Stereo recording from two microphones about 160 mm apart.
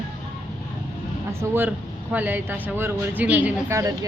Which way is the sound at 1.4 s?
15° right (ahead or behind).